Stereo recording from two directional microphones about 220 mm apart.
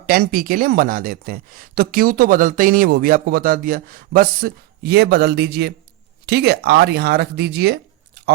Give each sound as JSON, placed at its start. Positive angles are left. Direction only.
{"t": 0.0, "sound": "speech", "side_deg": -45}